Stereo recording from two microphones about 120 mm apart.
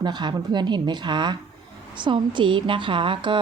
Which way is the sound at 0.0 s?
40° right (ahead or behind).